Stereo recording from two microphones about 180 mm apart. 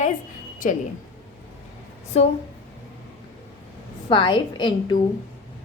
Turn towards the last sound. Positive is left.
turn(degrees=25)  # may be behind; listen again after turning